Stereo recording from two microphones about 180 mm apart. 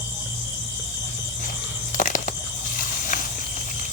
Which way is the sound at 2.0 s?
45° left (ahead or behind).